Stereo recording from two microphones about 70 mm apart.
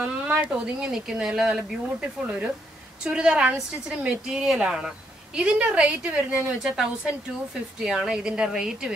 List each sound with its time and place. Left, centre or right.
0.0 s speech: centre
7.8 s speech: centre